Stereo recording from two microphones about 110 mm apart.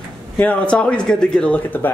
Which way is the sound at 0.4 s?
10° left (ahead or behind).